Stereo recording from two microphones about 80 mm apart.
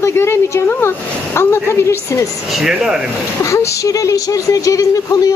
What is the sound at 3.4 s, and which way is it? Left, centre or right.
Speech, left.